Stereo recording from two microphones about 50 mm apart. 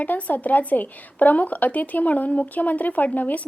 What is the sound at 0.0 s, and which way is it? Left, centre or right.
Speech, left.